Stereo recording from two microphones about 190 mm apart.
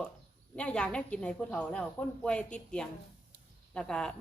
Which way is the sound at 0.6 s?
5° left (ahead or behind).